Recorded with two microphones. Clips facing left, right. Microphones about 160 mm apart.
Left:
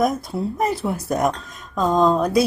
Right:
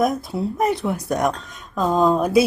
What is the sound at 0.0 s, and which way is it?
A woman's voice, centre (ahead or behind).